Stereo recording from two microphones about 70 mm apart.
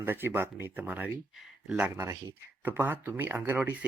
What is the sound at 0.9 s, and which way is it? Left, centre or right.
Speech, right.